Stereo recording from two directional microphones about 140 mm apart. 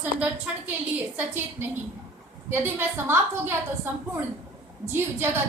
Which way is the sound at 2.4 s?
15° right (ahead or behind).